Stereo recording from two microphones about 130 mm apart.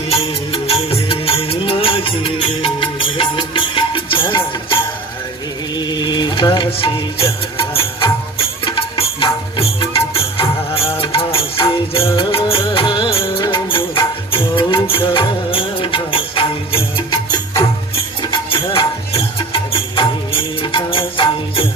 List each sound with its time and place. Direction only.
0.1 s music: 45° left (ahead or behind)